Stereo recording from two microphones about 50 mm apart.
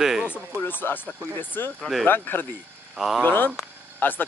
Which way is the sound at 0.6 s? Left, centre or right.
Left.